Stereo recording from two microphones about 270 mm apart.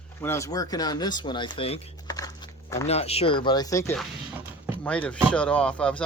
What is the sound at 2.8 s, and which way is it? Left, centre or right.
Speech, left.